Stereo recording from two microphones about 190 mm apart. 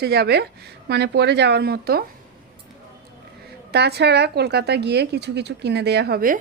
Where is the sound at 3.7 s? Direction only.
60° right (ahead or behind).